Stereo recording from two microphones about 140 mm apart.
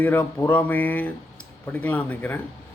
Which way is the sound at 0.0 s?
15° left (ahead or behind).